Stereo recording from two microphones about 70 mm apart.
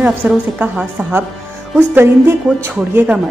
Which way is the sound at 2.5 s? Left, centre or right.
Centre.